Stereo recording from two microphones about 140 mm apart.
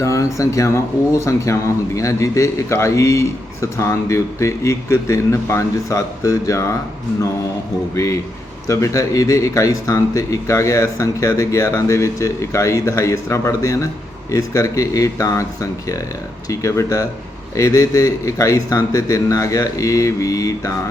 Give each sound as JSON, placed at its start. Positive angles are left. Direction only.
{"t": 0.0, "sound": "a man's voice", "side_deg": 20}
{"t": 7.9, "sound": "a man's voice", "side_deg": 20}